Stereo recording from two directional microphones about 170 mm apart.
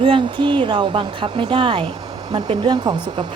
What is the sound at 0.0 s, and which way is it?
Speech, 30° right (ahead or behind).